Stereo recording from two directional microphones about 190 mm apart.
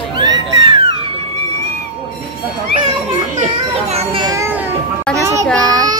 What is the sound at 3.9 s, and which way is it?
Children playing, 30° right (ahead or behind).